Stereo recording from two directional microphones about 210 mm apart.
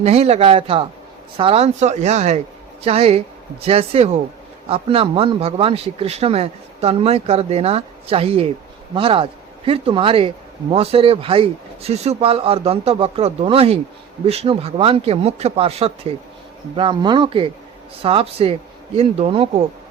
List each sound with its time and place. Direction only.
0.0 s speech: 30° right (ahead or behind)